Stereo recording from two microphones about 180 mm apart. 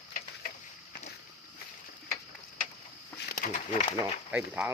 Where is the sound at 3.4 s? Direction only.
50° left (ahead or behind).